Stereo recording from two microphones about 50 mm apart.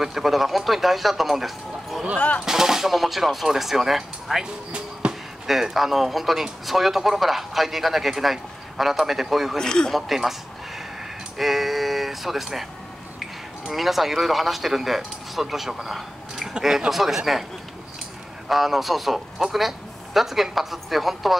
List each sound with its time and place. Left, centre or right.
0.0 s speech: centre
2.1 s speech: left
2.4 s speech: centre
5.0 s a sound: centre
5.5 s speech: centre
9.6 s a man's voice: centre
9.9 s speech: centre
11.3 s a sound: centre
13.7 s speech: centre
18.5 s speech: centre